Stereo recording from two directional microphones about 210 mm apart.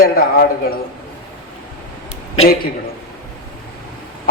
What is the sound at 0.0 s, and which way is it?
Speech, 45° left (ahead or behind).